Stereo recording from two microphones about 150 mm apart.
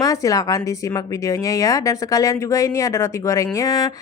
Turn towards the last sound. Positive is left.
turn(degrees=25)  # may be behind; listen again after turning